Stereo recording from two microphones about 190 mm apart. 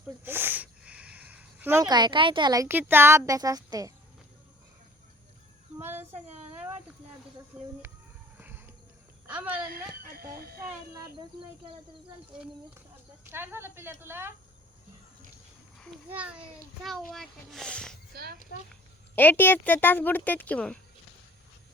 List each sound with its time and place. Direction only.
0.3 s speech: 10° right (ahead or behind)
5.8 s a child's voice: 10° right (ahead or behind)
7.5 s speech: 10° right (ahead or behind)
8.4 s a sound: 10° right (ahead or behind)
9.2 s a woman's voice: 10° right (ahead or behind)
10.0 s speech: 50° right (ahead or behind)
10.7 s speech: 15° right (ahead or behind)
12.3 s a child's voice: 5° right (ahead or behind)
16.1 s a child's voice: 5° right (ahead or behind)
18.1 s a child's voice: 55° right (ahead or behind)
18.7 s speech: 10° left (ahead or behind)